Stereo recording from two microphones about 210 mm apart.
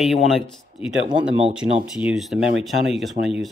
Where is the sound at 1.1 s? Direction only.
20° right (ahead or behind).